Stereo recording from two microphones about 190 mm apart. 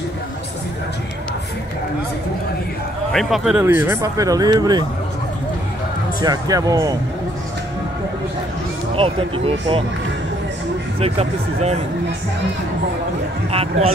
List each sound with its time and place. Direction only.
3.1 s a man's voice: centre (ahead or behind)
3.6 s speech: 15° right (ahead or behind)
6.2 s speech: 20° right (ahead or behind)
8.9 s speech: 30° right (ahead or behind)
11.0 s speech: 30° right (ahead or behind)
13.5 s speech: 30° right (ahead or behind)